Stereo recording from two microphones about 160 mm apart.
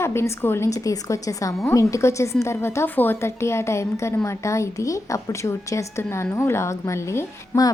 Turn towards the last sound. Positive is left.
turn(degrees=20)  # may be behind; listen again after turning